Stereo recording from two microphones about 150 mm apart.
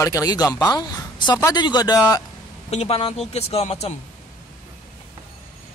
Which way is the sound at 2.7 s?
45° left (ahead or behind).